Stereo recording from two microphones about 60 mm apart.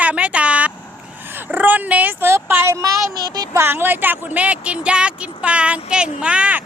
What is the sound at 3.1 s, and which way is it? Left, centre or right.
Speech, right.